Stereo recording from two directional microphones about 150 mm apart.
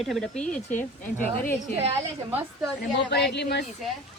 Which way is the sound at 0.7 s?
60° left (ahead or behind).